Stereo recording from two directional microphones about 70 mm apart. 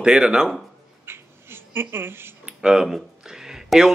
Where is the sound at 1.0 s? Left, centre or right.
Right.